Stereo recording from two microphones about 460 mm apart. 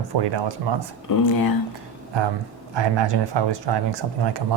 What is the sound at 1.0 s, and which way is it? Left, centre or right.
Speech, left.